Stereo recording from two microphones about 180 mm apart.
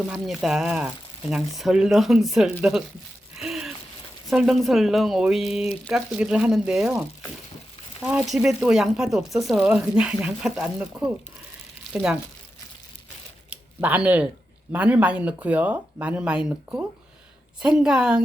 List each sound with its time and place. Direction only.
0.1 s speech: 5° right (ahead or behind)
3.3 s a sound: centre (ahead or behind)
4.3 s speech: centre (ahead or behind)
8.0 s speech: 5° right (ahead or behind)
13.5 s a sound: 10° right (ahead or behind)
14.7 s speech: 10° right (ahead or behind)